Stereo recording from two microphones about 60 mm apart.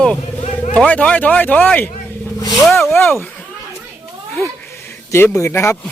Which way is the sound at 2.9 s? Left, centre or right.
Left.